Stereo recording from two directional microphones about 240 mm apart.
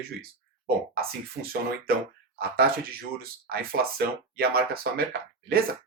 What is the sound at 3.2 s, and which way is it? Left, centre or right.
Speech, right.